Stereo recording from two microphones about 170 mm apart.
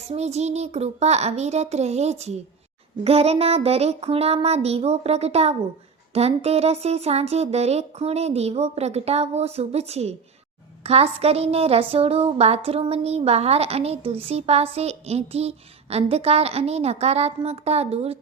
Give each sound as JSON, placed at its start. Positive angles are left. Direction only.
{"t": 0.1, "sound": "a woman's voice", "side_deg": -40}